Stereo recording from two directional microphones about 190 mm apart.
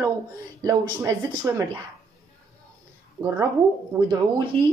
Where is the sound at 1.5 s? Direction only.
15° right (ahead or behind).